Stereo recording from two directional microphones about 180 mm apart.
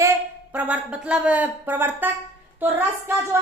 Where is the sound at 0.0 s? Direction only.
10° right (ahead or behind).